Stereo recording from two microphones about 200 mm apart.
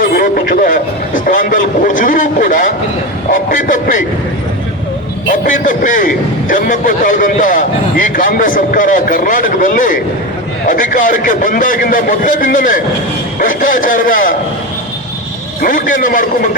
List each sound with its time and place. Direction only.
0.0 s a sound: 45° left (ahead or behind)
3.3 s a man's voice: 40° left (ahead or behind)
5.3 s a man's voice: 40° left (ahead or behind)
15.6 s a man's voice: 40° left (ahead or behind)